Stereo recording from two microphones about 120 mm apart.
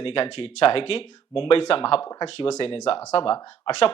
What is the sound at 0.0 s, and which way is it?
Speech, 50° left (ahead or behind).